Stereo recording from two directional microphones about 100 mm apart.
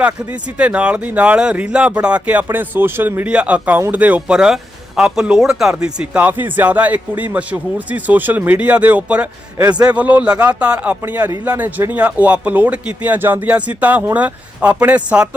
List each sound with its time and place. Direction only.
0.0 s speech: 15° right (ahead or behind)